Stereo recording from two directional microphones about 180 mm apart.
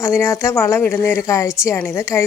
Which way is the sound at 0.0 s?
15° left (ahead or behind).